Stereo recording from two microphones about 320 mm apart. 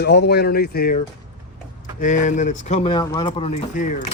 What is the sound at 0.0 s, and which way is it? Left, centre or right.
A man's voice, left.